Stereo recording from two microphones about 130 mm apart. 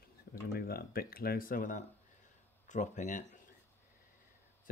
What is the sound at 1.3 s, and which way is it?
Speech, 90° left.